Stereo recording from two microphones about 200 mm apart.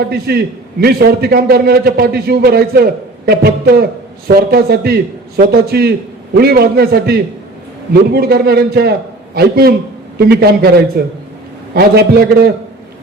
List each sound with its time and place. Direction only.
0.1 s a man's voice: 50° right (ahead or behind)